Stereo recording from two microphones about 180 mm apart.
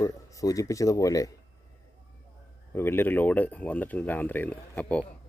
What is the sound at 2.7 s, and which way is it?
Speech, 10° left (ahead or behind).